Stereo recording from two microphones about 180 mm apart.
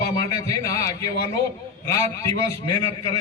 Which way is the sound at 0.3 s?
20° left (ahead or behind).